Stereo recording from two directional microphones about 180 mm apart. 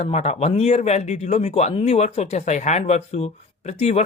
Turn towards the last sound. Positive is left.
turn(degrees=40)  # may be behind; listen again after turning